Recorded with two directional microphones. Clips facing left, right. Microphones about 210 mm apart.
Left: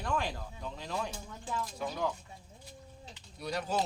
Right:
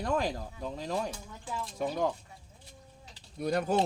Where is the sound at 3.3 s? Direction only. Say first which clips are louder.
Right 7 dB; 50° right (ahead or behind).